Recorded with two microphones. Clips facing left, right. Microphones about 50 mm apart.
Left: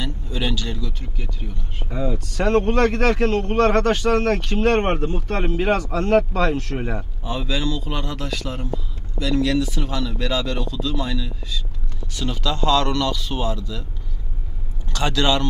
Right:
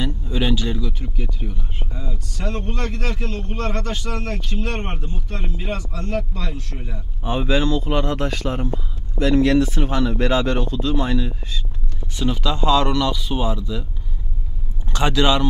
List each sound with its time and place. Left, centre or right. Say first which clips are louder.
0.0 s speech: right 3 dB; centre
1.9 s a man's voice: left 12 dB; left
7.2 s speech: right 5 dB; right
12.1 s a man's voice: right 3 dB; centre
14.9 s speech: right 2 dB; right